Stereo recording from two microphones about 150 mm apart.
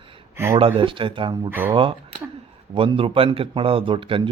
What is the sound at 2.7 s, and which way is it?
Speech, 35° right (ahead or behind).